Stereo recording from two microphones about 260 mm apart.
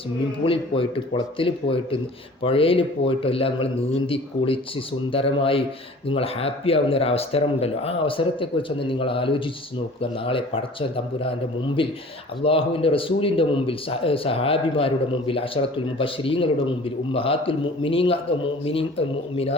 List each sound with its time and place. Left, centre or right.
0.4 s speech: left